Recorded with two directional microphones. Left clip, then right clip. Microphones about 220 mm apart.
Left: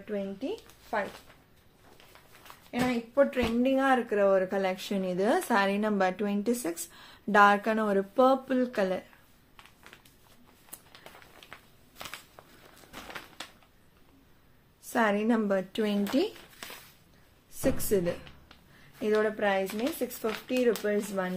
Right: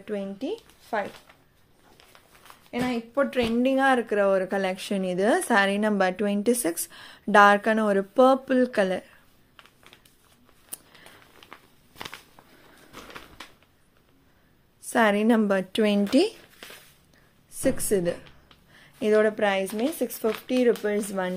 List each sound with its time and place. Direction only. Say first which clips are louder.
0.0 s speech: right 3 dB; 45° right (ahead or behind)
2.7 s a woman's voice: right 2 dB; 45° right (ahead or behind)
14.8 s a woman's voice: right 5 dB; 35° right (ahead or behind)
17.6 s a woman's voice: right 4 dB; 30° right (ahead or behind)
18.9 s speech: right 6 dB; 40° right (ahead or behind)